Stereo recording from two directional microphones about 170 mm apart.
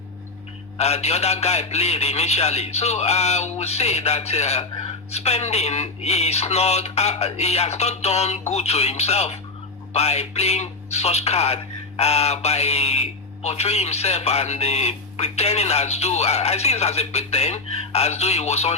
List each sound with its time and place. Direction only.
0.8 s speech: 40° left (ahead or behind)